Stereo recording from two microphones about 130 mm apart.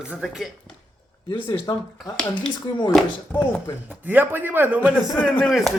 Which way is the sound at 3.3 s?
15° left (ahead or behind).